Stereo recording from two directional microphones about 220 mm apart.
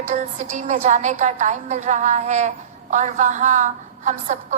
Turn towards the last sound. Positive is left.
turn(degrees=-35)  # may be behind; listen again after turning